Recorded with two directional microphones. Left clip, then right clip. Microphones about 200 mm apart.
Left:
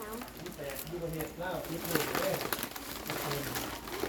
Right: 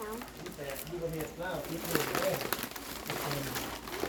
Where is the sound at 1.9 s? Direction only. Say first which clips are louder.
Even; 20° right (ahead or behind).